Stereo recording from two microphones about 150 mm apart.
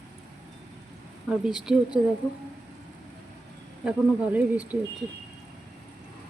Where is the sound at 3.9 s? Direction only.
10° right (ahead or behind).